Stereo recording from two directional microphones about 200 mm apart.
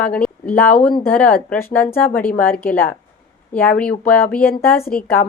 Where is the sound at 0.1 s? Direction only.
5° left (ahead or behind).